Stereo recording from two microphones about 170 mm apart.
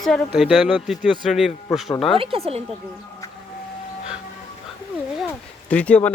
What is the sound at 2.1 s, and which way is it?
Speech, 35° right (ahead or behind).